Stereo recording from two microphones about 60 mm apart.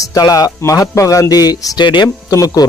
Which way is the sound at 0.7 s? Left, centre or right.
Left.